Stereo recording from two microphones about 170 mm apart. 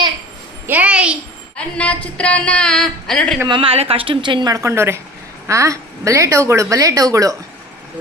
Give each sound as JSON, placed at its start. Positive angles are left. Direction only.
{"t": 0.7, "sound": "a child's voice", "side_deg": -10}
{"t": 1.5, "sound": "speech", "side_deg": 5}
{"t": 3.4, "sound": "a woman's voice", "side_deg": -30}